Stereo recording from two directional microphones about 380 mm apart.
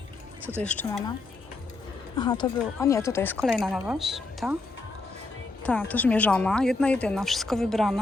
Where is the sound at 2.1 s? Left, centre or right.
Centre.